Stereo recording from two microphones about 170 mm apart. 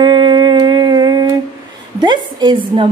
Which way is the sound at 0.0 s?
25° right (ahead or behind).